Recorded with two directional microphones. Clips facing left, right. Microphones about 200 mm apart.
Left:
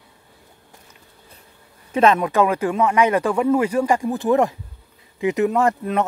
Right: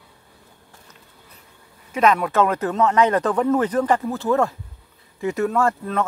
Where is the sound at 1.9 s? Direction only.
30° left (ahead or behind).